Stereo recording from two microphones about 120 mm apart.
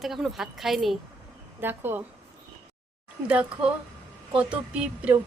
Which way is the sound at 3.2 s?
10° right (ahead or behind).